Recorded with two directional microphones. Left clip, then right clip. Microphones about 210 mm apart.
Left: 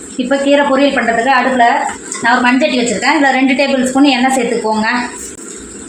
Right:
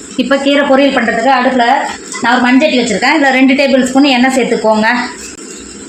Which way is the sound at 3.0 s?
50° right (ahead or behind).